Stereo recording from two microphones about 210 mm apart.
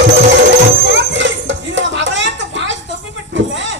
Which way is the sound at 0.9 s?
60° right (ahead or behind).